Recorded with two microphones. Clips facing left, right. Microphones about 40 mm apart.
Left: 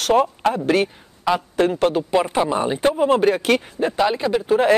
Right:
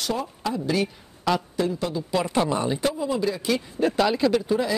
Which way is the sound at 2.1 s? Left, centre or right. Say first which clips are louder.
Left 4 dB; left.